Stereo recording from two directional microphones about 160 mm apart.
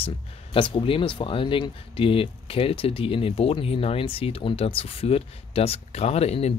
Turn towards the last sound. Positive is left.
turn(degrees=40)  # may be behind; listen again after turning